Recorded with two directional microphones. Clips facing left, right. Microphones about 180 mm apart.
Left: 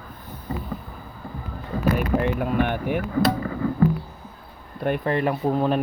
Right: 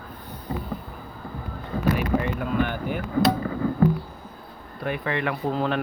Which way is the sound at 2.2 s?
65° left (ahead or behind).